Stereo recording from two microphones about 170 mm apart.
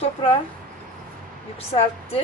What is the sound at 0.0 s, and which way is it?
Speech, 30° left (ahead or behind).